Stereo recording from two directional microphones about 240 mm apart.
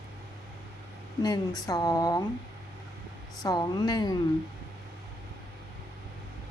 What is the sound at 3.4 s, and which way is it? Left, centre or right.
Speech, centre.